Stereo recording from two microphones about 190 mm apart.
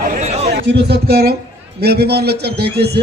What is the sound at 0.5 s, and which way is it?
A man's voice, 60° right (ahead or behind).